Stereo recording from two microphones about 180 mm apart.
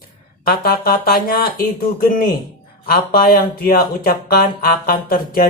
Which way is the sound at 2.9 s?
55° left (ahead or behind).